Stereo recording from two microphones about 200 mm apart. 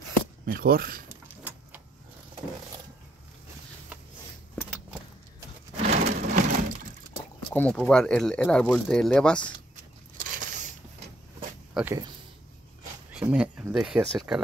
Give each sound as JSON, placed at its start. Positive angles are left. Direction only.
{"t": 0.5, "sound": "speech", "side_deg": -45}
{"t": 5.8, "sound": "a sound", "side_deg": -35}
{"t": 7.5, "sound": "speech", "side_deg": 5}
{"t": 10.2, "sound": "a sound", "side_deg": -40}
{"t": 11.7, "sound": "speech", "side_deg": -10}
{"t": 13.1, "sound": "speech", "side_deg": -5}